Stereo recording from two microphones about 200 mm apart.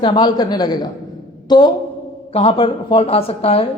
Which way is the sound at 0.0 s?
20° left (ahead or behind).